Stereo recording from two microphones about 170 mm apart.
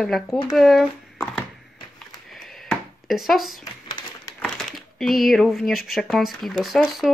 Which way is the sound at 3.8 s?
25° left (ahead or behind).